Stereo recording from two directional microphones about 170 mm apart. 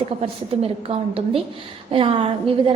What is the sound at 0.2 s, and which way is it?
A woman's voice, 35° right (ahead or behind).